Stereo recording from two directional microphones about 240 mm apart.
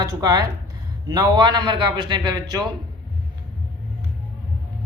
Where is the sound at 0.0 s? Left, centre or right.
Centre.